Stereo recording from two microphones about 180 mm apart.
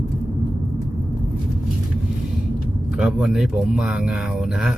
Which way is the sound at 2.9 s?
5° right (ahead or behind).